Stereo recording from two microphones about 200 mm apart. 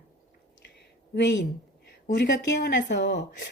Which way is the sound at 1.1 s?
60° left (ahead or behind).